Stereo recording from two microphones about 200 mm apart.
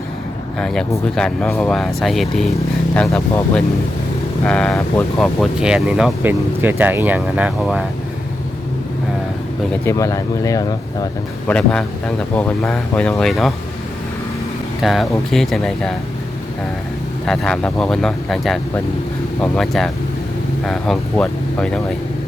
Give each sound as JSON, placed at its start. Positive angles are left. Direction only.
{"t": 0.6, "sound": "speech", "side_deg": 5}
{"t": 4.4, "sound": "speech", "side_deg": 5}
{"t": 9.8, "sound": "speech", "side_deg": 15}
{"t": 11.5, "sound": "speech", "side_deg": 5}
{"t": 14.8, "sound": "speech", "side_deg": 0}
{"t": 17.2, "sound": "speech", "side_deg": 5}